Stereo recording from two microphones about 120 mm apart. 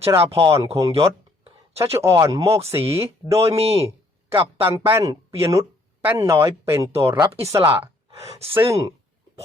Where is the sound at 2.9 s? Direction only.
20° right (ahead or behind).